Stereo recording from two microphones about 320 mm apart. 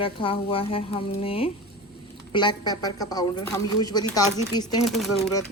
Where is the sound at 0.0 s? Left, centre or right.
Centre.